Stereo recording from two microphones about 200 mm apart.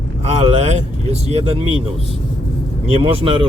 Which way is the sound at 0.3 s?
30° right (ahead or behind).